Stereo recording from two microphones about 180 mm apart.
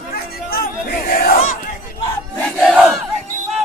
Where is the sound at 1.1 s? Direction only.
50° left (ahead or behind).